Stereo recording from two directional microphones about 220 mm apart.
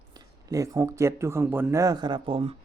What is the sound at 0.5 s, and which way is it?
Speech, 15° right (ahead or behind).